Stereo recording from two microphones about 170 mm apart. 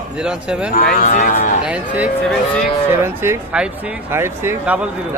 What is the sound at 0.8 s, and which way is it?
Speech, 55° left (ahead or behind).